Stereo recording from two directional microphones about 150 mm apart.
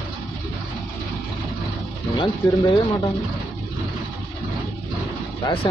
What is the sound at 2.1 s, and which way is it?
Speech, 30° left (ahead or behind).